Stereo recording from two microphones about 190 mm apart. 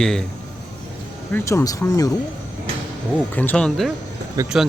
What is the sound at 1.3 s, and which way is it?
Speech, 15° left (ahead or behind).